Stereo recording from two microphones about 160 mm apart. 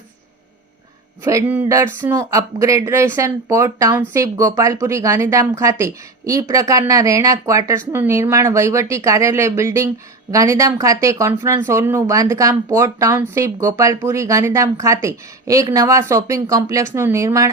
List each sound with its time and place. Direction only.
1.2 s speech: 15° right (ahead or behind)